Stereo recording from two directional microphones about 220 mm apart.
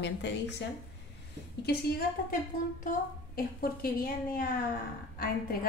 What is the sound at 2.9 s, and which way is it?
A woman's voice, 40° left (ahead or behind).